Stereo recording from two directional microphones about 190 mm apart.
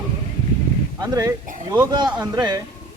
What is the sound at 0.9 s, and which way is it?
Speech, 20° right (ahead or behind).